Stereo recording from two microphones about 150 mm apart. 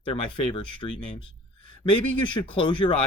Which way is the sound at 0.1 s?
35° left (ahead or behind).